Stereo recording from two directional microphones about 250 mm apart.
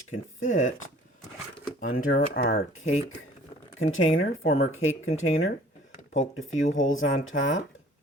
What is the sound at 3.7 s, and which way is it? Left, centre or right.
Speech, left.